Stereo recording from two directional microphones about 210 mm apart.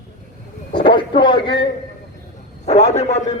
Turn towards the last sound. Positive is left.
turn(degrees=30)  # may be behind; listen again after turning